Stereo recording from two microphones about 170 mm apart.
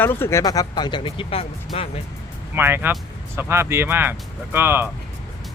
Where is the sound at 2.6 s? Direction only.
10° right (ahead or behind).